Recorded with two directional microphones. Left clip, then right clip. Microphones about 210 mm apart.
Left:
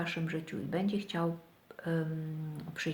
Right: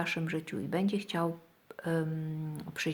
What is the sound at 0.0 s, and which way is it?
Speech, 40° right (ahead or behind).